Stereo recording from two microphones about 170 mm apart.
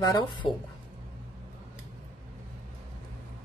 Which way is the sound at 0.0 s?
25° left (ahead or behind).